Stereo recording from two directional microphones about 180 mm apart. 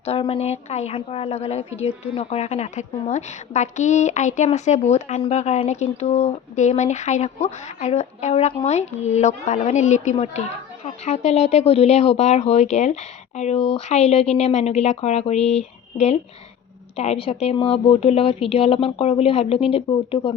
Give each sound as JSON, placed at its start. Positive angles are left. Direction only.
{"t": 0.0, "sound": "speech", "side_deg": 35}